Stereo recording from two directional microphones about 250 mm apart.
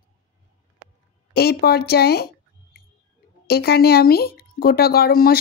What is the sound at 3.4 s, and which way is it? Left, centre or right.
Speech, left.